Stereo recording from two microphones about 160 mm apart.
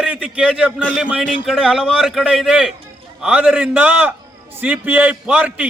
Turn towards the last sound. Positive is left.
turn(degrees=-10)  # may be behind; listen again after turning